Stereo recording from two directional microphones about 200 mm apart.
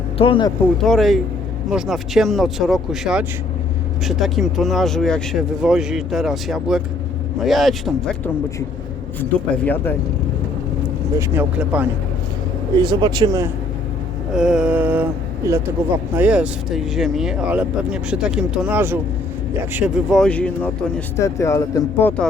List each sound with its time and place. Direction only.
0.2 s speech: 25° left (ahead or behind)
0.8 s speech: centre (ahead or behind)
9.6 s speech: 10° left (ahead or behind)
11.2 s speech: 10° right (ahead or behind)
12.7 s speech: 20° right (ahead or behind)
14.3 s speech: 5° right (ahead or behind)